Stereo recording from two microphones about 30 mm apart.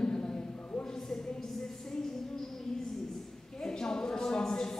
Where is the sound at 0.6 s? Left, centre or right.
Left.